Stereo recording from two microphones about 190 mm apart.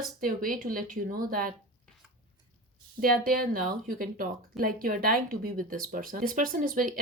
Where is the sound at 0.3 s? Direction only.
45° right (ahead or behind).